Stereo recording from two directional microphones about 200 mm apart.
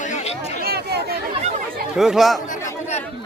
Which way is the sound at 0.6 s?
50° right (ahead or behind).